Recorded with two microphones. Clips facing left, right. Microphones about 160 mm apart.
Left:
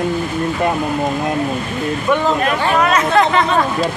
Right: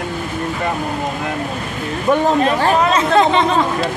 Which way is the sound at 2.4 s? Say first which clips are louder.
Right 1 dB; 25° right (ahead or behind).